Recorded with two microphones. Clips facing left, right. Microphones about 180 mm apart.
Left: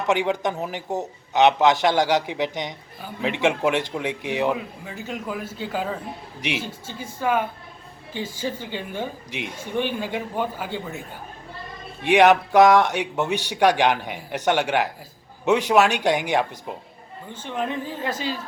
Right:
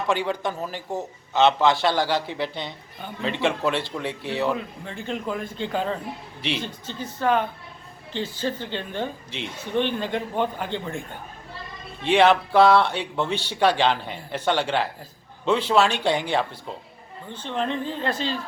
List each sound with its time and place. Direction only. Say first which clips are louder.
0.1 s speech: left 4 dB; 20° left (ahead or behind)